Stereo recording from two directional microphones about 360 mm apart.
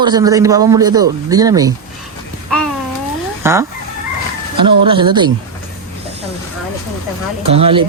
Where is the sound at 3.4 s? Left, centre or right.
Centre.